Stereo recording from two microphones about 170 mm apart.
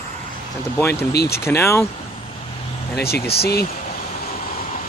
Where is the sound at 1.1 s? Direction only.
70° left (ahead or behind).